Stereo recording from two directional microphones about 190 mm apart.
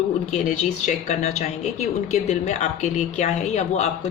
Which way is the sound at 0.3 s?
35° left (ahead or behind).